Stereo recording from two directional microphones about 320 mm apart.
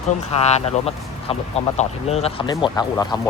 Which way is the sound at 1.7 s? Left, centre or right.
Centre.